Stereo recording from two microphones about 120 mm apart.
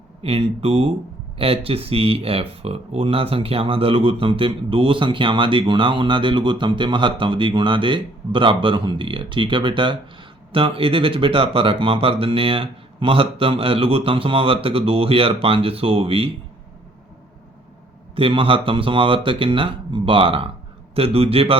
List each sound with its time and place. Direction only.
0.2 s speech: 55° right (ahead or behind)
18.2 s speech: 45° right (ahead or behind)